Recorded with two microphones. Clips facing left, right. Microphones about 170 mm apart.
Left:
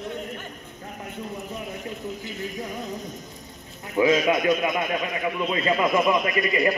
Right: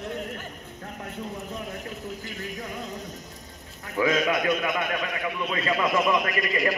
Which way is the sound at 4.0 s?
20° left (ahead or behind).